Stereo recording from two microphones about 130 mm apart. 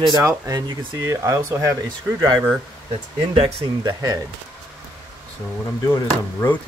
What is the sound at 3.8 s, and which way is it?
Speech, 25° right (ahead or behind).